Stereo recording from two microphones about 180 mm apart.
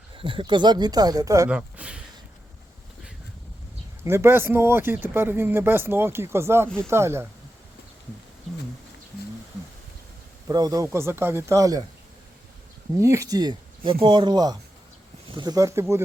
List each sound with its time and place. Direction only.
0.2 s speech: 30° right (ahead or behind)
1.5 s a sound: 5° right (ahead or behind)
4.0 s speech: 15° right (ahead or behind)
10.5 s speech: 20° right (ahead or behind)
13.0 s speech: 15° right (ahead or behind)